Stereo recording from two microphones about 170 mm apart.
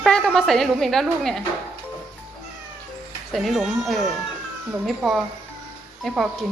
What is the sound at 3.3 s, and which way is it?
Speech, centre (ahead or behind).